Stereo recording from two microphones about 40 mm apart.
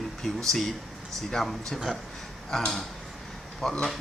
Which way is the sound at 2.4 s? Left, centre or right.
Centre.